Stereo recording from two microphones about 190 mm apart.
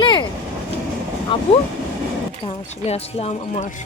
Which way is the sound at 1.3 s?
25° left (ahead or behind).